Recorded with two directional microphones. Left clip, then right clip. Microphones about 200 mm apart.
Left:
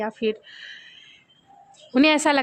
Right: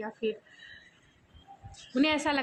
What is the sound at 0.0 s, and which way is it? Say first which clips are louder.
Speech: left 8 dB; 55° left (ahead or behind).